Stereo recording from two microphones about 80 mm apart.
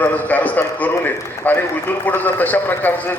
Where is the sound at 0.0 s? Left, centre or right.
Centre.